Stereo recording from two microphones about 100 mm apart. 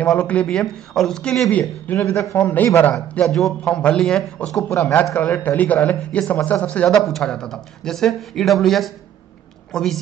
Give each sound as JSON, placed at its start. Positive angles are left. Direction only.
{"t": 0.1, "sound": "speech", "side_deg": 10}
{"t": 2.0, "sound": "a man's voice", "side_deg": 25}
{"t": 3.3, "sound": "a man's voice", "side_deg": 5}